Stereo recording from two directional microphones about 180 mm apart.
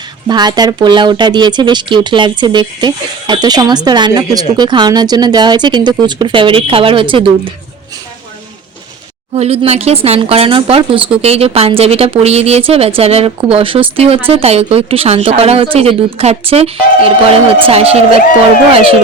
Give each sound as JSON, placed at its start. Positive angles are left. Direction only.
{"t": 0.3, "sound": "speech", "side_deg": -25}
{"t": 9.3, "sound": "a woman's voice", "side_deg": -35}